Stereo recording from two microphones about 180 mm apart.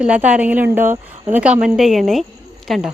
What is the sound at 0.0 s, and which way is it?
A woman's voice, 5° right (ahead or behind).